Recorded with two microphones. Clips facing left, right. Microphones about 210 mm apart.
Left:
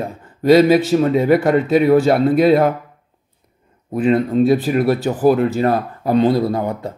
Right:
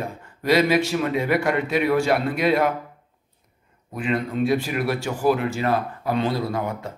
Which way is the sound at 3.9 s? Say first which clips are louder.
Left 9 dB; 35° left (ahead or behind).